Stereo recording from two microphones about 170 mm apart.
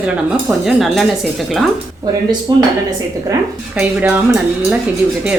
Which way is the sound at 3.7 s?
10° right (ahead or behind).